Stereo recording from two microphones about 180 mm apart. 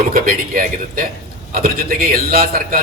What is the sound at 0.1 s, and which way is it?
A man's voice, 55° right (ahead or behind).